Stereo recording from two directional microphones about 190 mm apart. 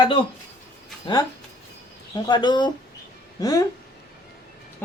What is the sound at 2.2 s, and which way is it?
Speech, 25° left (ahead or behind).